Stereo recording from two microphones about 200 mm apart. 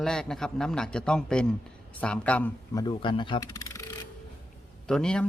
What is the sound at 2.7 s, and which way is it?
Speech, 20° left (ahead or behind).